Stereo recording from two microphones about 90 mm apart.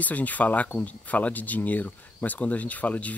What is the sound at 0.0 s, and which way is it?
Speech, 15° left (ahead or behind).